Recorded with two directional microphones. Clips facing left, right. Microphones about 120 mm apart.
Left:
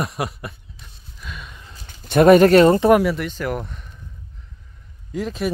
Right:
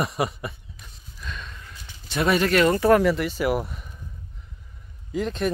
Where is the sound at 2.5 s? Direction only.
30° left (ahead or behind).